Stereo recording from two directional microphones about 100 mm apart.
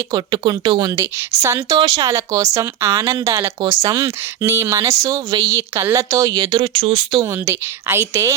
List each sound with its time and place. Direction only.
0.1 s speech: 50° right (ahead or behind)
0.9 s a woman's voice: 30° right (ahead or behind); by 6.7 s 45° right (ahead or behind)
6.7 s speech: 75° right (ahead or behind)
7.2 s a woman's voice: 25° right (ahead or behind)